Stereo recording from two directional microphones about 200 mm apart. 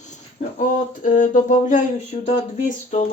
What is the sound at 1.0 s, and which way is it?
Speech, 40° left (ahead or behind).